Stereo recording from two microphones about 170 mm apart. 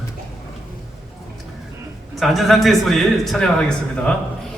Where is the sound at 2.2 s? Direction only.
Centre (ahead or behind).